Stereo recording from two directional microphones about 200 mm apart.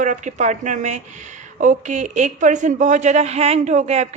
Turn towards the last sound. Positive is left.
turn(degrees=-35)  # may be behind; listen again after turning